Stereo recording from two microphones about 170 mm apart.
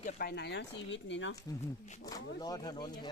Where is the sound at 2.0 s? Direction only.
20° left (ahead or behind).